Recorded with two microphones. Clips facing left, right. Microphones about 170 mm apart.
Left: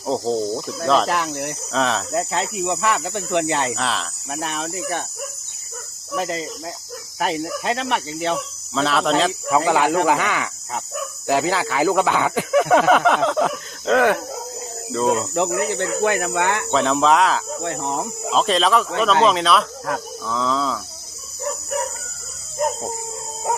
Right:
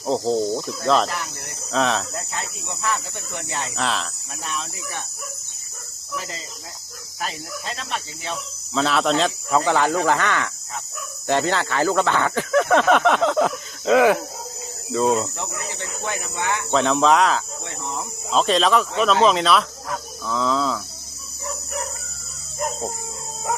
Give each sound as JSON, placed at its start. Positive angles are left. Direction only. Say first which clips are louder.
{"t": 0.0, "sound": "speech", "louder": "even", "side_deg": 0}
{"t": 1.0, "sound": "speech", "louder": "left 7 dB", "side_deg": 85}
{"t": 1.7, "sound": "speech", "louder": "right 1 dB", "side_deg": 0}
{"t": 2.1, "sound": "speech", "louder": "left 9 dB", "side_deg": 80}
{"t": 3.8, "sound": "speech", "louder": "even", "side_deg": 0}
{"t": 4.3, "sound": "speech", "louder": "left 9 dB", "side_deg": 65}
{"t": 6.1, "sound": "speech", "louder": "left 9 dB", "side_deg": 60}
{"t": 8.7, "sound": "speech", "louder": "left 1 dB", "side_deg": 0}
{"t": 9.5, "sound": "speech", "louder": "left 1 dB", "side_deg": 10}
{"t": 15.4, "sound": "speech", "louder": "left 11 dB", "side_deg": 75}
{"t": 16.7, "sound": "speech", "louder": "even", "side_deg": 0}
{"t": 17.6, "sound": "speech", "louder": "left 7 dB", "side_deg": 55}
{"t": 18.3, "sound": "speech", "louder": "even", "side_deg": 0}